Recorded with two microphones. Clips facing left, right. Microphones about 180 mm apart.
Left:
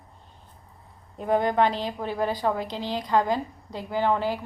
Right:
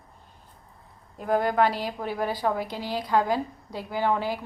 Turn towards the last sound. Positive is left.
turn(degrees=-10)  # may be behind; listen again after turning